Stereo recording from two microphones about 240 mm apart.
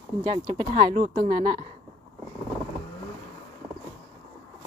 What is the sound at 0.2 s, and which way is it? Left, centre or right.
A woman's voice, centre.